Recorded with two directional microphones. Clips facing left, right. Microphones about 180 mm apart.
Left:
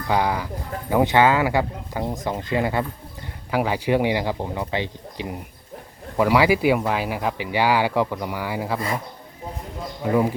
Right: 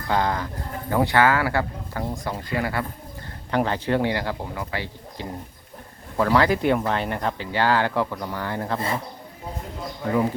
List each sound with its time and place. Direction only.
0.1 s speech: 10° left (ahead or behind)
3.5 s speech: 10° left (ahead or behind)
10.0 s speech: 10° left (ahead or behind)